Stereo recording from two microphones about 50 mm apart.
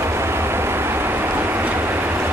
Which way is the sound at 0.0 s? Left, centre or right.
Right.